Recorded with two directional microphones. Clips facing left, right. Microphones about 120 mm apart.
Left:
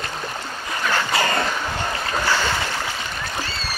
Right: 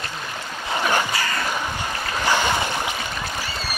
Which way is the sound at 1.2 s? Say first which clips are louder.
Left 5 dB; 35° left (ahead or behind).